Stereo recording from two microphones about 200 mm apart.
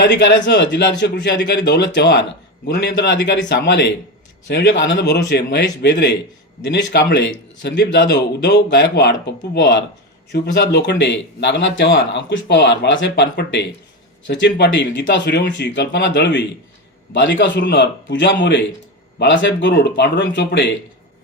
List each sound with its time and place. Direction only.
0.0 s a man's voice: 60° left (ahead or behind)